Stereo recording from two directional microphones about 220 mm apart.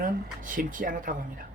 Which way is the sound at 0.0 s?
40° right (ahead or behind).